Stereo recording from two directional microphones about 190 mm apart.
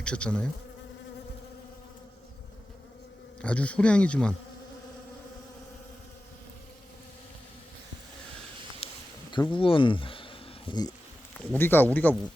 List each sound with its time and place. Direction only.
0.0 s insect: 5° left (ahead or behind)
3.4 s speech: 5° left (ahead or behind)
9.3 s speech: 25° left (ahead or behind)
11.3 s speech: 10° left (ahead or behind)